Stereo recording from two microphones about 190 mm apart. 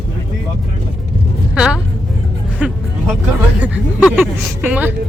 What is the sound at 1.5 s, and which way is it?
Speech, 5° right (ahead or behind).